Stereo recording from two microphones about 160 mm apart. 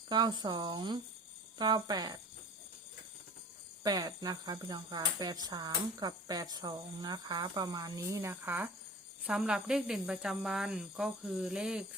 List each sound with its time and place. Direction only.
0.1 s speech: 25° right (ahead or behind)
3.8 s speech: 25° right (ahead or behind); by 11.9 s 5° right (ahead or behind)